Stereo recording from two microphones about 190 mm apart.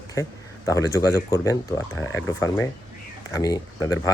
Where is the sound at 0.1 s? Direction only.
15° left (ahead or behind).